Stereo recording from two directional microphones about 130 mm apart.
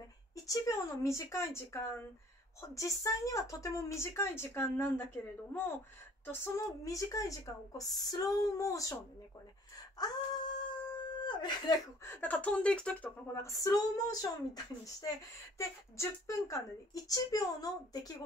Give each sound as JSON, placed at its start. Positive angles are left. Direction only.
{"t": 0.5, "sound": "speech", "side_deg": 25}
{"t": 6.2, "sound": "speech", "side_deg": 20}
{"t": 9.9, "sound": "a sound", "side_deg": 35}
{"t": 12.0, "sound": "speech", "side_deg": 15}
{"t": 13.3, "sound": "speech", "side_deg": 25}